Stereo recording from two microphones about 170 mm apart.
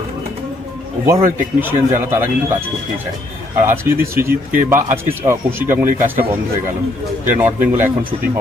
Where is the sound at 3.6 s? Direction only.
15° right (ahead or behind).